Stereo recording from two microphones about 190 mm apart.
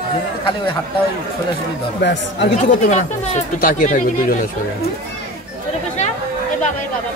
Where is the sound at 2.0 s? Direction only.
65° left (ahead or behind).